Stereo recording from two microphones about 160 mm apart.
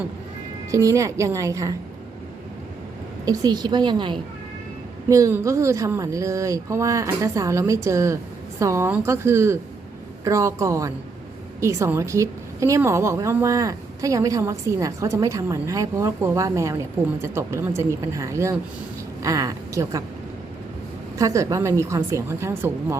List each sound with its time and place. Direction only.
0.7 s a woman's voice: 20° right (ahead or behind)
3.2 s a woman's voice: 25° right (ahead or behind)
21.2 s a woman's voice: 20° right (ahead or behind)